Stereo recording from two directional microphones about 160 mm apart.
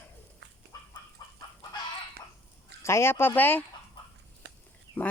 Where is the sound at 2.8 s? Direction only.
15° left (ahead or behind).